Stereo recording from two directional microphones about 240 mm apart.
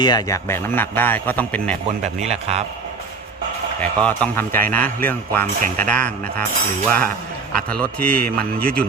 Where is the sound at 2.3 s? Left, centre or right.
Right.